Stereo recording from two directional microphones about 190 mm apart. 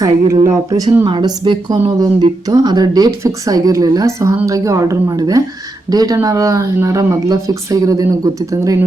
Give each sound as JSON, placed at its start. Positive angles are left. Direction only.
{"t": 0.0, "sound": "a woman's voice", "side_deg": -20}